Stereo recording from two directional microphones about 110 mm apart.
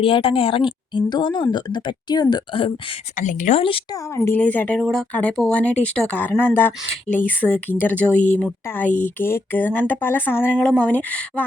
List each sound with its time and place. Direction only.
0.0 s a woman's voice: 55° left (ahead or behind)
3.9 s speech: 25° left (ahead or behind)
4.4 s speech: 10° left (ahead or behind)
4.8 s speech: centre (ahead or behind)
5.1 s speech: 10° left (ahead or behind)
10.6 s speech: 10° left (ahead or behind)